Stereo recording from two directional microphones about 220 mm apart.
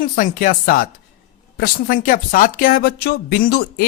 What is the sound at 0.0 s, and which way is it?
Speech, 40° left (ahead or behind).